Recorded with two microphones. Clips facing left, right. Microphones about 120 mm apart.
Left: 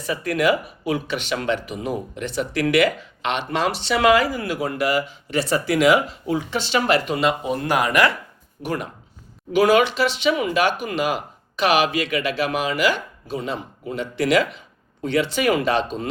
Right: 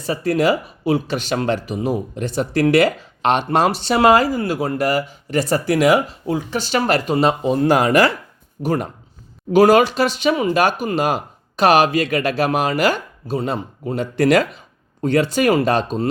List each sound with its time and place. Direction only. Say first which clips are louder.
0.0 s speech: right 3 dB; 30° right (ahead or behind)